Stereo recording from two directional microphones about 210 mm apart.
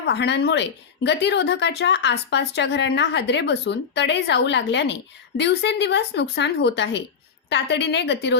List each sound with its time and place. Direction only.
0.0 s a woman's voice: 55° left (ahead or behind)